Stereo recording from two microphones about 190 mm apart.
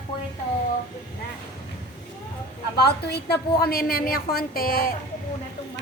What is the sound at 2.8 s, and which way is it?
A woman's voice, 60° left (ahead or behind).